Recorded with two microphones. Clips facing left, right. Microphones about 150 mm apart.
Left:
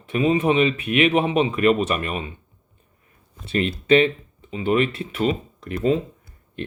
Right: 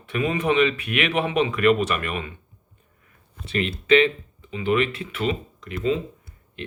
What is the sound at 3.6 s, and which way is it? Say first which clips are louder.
Speech: left 1 dB; 35° left (ahead or behind).